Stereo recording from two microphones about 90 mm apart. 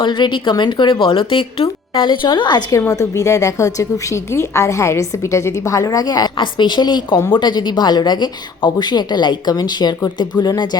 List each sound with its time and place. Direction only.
0.0 s speech: 60° left (ahead or behind)
2.6 s a woman's voice: 35° left (ahead or behind)
6.3 s speech: 60° left (ahead or behind)